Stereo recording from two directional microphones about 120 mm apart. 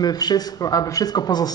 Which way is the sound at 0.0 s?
35° left (ahead or behind).